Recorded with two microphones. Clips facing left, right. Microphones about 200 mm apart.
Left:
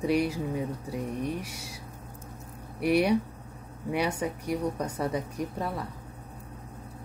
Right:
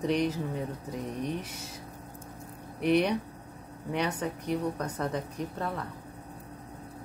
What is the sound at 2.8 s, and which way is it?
Speech, 10° left (ahead or behind).